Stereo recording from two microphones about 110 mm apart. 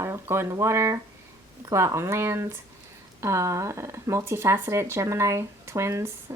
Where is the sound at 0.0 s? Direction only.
25° right (ahead or behind).